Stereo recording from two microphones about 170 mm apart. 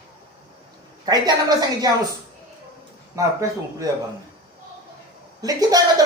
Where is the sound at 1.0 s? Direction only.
25° right (ahead or behind).